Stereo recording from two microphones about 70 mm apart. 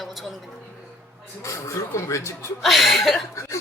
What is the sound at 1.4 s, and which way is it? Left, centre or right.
Speech, left.